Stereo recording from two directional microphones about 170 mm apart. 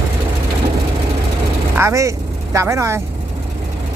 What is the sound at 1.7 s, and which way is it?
Speech, 15° right (ahead or behind).